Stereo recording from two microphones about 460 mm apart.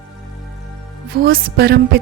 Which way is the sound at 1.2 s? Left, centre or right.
Centre.